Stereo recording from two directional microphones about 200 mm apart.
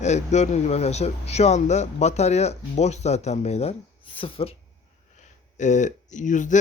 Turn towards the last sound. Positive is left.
turn(degrees=40)  # may be behind; listen again after turning